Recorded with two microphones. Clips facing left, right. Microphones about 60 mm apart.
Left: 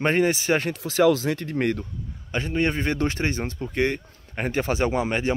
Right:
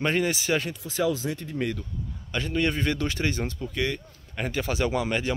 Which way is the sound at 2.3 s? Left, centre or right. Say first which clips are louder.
Left 2 dB; left.